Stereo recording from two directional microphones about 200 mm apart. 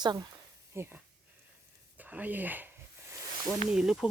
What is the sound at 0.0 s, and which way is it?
Speech, 20° right (ahead or behind).